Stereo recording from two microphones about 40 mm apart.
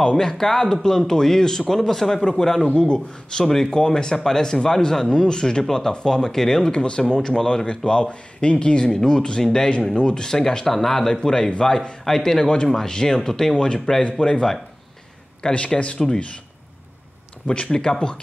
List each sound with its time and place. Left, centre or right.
0.0 s speech: centre
2.6 s speech: left
13.6 s speech: left
15.4 s speech: left
17.5 s speech: left